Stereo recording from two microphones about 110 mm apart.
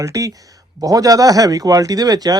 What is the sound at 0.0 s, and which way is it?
Speech, 30° right (ahead or behind).